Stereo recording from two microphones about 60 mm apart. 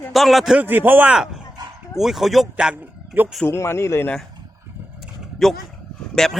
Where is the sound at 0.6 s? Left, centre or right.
Right.